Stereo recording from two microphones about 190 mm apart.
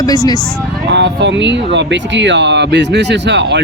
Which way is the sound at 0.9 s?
70° right (ahead or behind).